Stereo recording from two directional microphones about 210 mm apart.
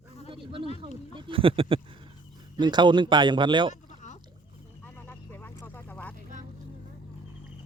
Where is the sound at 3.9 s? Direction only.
35° left (ahead or behind).